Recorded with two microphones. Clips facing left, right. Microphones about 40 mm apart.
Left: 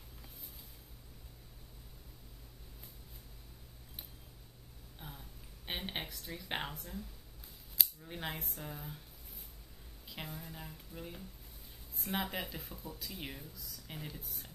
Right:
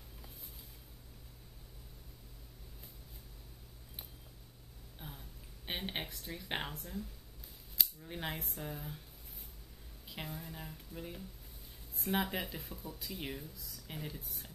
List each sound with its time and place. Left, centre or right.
4.9 s a sound: centre
5.7 s speech: centre
7.7 s speech: centre
10.0 s speech: centre